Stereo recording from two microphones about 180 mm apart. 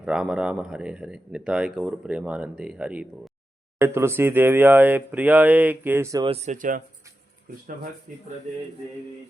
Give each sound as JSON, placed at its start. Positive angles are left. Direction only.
{"t": 0.0, "sound": "speech", "side_deg": -5}
{"t": 6.2, "sound": "speech", "side_deg": -35}